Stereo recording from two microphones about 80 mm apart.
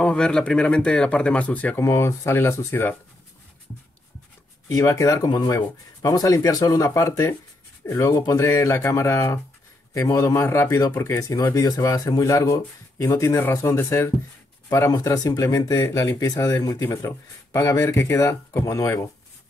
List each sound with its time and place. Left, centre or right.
0.0 s speech: centre
1.8 s speech: left
4.6 s speech: left
14.9 s speech: left